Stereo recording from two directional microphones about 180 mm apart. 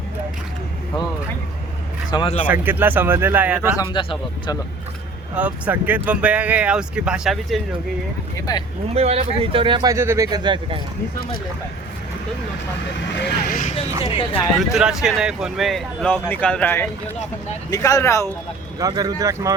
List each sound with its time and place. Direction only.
2.0 s speech: 25° left (ahead or behind)
2.5 s speech: 10° right (ahead or behind)
3.8 s speech: 25° left (ahead or behind)
5.3 s speech: 10° right (ahead or behind)
8.4 s speech: 20° left (ahead or behind)
9.0 s speech: 35° right (ahead or behind)
13.5 s speech: 45° left (ahead or behind)
14.0 s speech: 30° left (ahead or behind)
14.6 s speech: 5° right (ahead or behind); by 18.3 s 15° left (ahead or behind)
18.8 s speech: 20° right (ahead or behind)